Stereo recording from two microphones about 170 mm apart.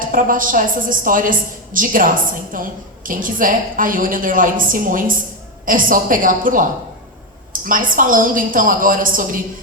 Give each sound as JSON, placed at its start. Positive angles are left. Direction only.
{"t": 0.0, "sound": "a woman's voice", "side_deg": -55}